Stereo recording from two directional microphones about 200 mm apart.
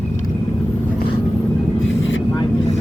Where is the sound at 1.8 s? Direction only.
70° left (ahead or behind).